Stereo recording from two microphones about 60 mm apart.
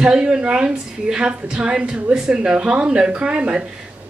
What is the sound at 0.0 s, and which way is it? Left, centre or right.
A woman's voice, centre.